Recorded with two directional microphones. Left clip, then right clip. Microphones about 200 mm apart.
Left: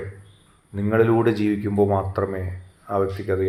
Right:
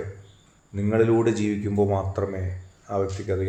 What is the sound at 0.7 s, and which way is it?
Speech, 10° left (ahead or behind).